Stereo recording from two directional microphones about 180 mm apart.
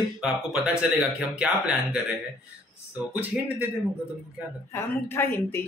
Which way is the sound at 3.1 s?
10° right (ahead or behind).